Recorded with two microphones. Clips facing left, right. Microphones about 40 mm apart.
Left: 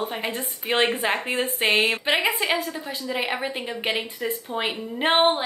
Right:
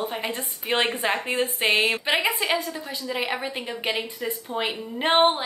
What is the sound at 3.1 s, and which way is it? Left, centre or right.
A woman's voice, centre.